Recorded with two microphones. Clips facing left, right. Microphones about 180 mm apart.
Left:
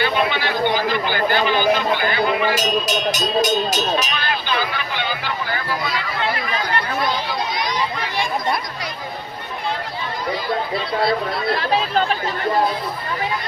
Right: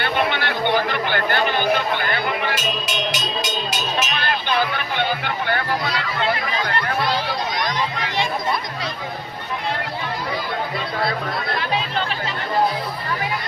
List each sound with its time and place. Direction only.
0.0 s a sound: 60° right (ahead or behind)
2.6 s speech: 40° left (ahead or behind)
4.1 s speech: 50° right (ahead or behind)
11.6 s speech: 40° left (ahead or behind)